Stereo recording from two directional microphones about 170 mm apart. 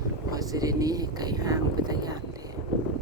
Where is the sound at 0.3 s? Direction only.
20° right (ahead or behind).